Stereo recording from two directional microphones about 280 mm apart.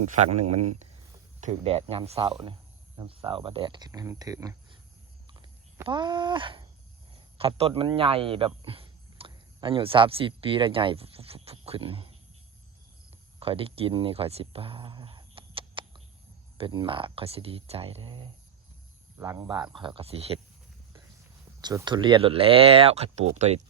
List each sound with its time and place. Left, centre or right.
0.0 s speech: right
5.3 s a sound: centre
7.3 s speech: centre
13.4 s speech: centre
21.6 s speech: centre